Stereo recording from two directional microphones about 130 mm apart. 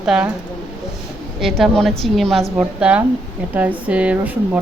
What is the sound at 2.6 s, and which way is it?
A woman's voice, 10° right (ahead or behind).